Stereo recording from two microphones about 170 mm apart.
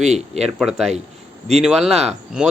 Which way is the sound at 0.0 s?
40° right (ahead or behind).